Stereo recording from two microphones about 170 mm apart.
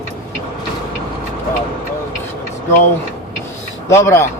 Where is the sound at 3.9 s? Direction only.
15° left (ahead or behind).